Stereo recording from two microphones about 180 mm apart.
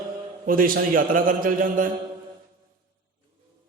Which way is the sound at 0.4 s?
50° right (ahead or behind).